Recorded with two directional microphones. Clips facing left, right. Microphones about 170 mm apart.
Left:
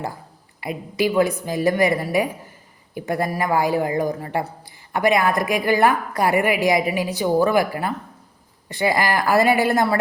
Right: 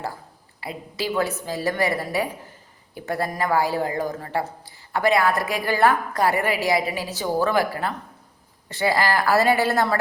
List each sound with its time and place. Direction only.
0.6 s a woman's voice: 15° left (ahead or behind)